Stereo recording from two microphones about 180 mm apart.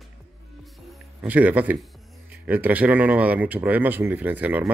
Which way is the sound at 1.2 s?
10° right (ahead or behind).